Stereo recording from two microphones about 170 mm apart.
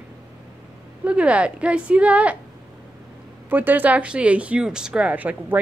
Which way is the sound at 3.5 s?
10° right (ahead or behind).